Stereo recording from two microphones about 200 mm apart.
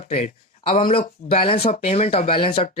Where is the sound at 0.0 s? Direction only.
30° left (ahead or behind).